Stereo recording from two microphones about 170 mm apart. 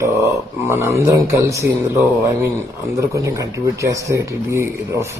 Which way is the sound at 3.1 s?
20° right (ahead or behind).